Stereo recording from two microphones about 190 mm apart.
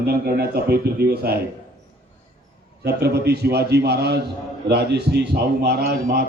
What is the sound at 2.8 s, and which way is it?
A man's voice, 60° right (ahead or behind).